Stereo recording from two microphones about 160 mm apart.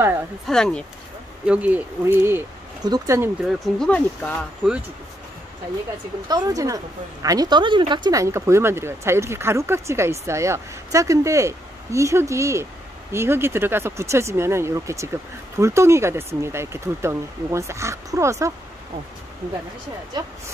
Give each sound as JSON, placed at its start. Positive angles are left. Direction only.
{"t": 0.5, "sound": "speech", "side_deg": 5}
{"t": 1.4, "sound": "speech", "side_deg": -10}
{"t": 3.4, "sound": "speech", "side_deg": 0}
{"t": 6.2, "sound": "a woman's voice", "side_deg": -25}
{"t": 20.1, "sound": "a woman's voice", "side_deg": -25}